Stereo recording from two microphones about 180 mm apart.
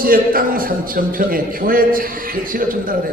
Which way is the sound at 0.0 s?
55° right (ahead or behind).